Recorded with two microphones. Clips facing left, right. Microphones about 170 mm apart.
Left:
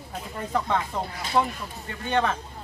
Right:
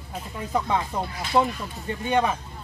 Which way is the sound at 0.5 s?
10° right (ahead or behind).